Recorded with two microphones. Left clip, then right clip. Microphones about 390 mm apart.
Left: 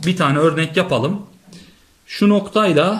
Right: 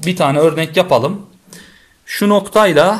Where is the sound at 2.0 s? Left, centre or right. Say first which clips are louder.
Right 4 dB; centre.